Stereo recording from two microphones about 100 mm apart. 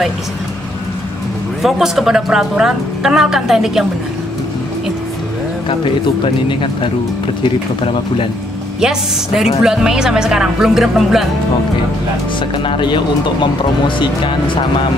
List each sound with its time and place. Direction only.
1.6 s a woman's voice: 5° right (ahead or behind)
5.7 s speech: 60° left (ahead or behind)
8.8 s a woman's voice: 5° right (ahead or behind)
12.6 s speech: 55° left (ahead or behind)